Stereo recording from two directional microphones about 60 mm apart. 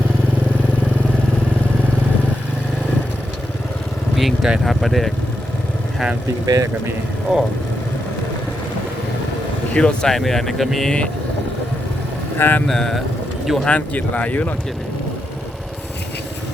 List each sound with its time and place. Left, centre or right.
4.6 s speech: centre
6.4 s speech: right
7.3 s speech: centre
9.7 s speech: centre
12.4 s speech: left
12.6 s speech: centre
13.7 s speech: left